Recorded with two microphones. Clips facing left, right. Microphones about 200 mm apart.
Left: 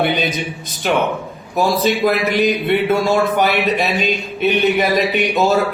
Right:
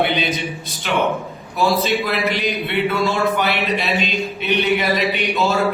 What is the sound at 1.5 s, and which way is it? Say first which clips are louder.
A man's voice: left 2 dB; 45° left (ahead or behind).